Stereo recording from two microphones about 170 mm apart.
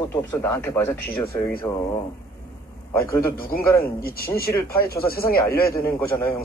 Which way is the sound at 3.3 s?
60° left (ahead or behind).